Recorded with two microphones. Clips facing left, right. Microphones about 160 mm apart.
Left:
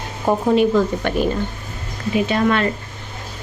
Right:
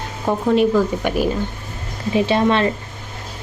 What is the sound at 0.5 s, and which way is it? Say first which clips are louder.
Speech: right 2 dB; centre (ahead or behind).